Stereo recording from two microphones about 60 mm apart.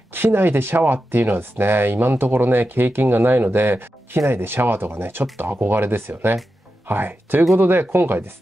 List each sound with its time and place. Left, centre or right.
0.1 s speech: right